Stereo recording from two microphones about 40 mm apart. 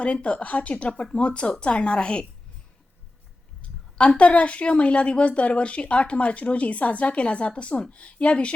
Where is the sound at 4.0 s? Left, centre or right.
Left.